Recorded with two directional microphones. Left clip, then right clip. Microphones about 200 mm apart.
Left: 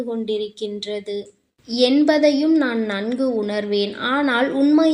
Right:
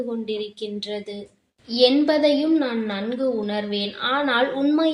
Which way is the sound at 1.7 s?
45° left (ahead or behind).